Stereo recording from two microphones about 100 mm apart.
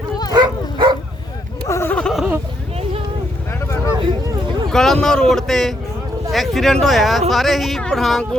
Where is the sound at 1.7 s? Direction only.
25° left (ahead or behind).